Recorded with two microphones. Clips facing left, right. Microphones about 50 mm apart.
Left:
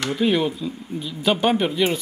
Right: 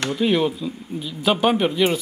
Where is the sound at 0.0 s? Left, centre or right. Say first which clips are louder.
Right 1 dB; centre.